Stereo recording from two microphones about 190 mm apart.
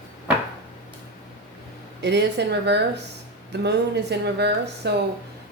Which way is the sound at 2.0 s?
65° right (ahead or behind).